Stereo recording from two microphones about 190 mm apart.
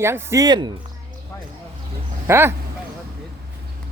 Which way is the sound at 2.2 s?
10° right (ahead or behind).